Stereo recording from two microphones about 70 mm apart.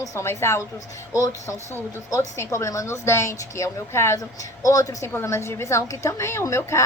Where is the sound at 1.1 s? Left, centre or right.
Left.